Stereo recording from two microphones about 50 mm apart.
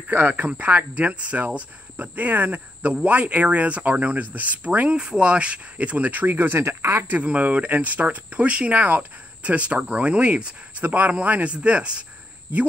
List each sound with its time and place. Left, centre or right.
0.1 s speech: right
2.8 s speech: right
6.6 s speech: right
7.2 s speech: right